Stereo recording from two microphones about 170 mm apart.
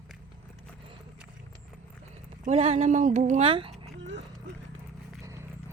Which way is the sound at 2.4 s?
40° right (ahead or behind).